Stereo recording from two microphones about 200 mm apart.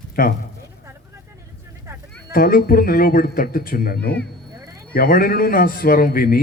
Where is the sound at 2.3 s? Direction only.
45° left (ahead or behind).